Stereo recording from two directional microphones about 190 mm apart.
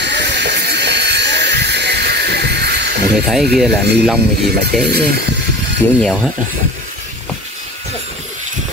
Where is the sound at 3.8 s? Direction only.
60° right (ahead or behind).